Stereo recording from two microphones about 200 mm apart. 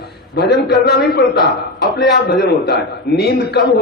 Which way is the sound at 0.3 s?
55° left (ahead or behind).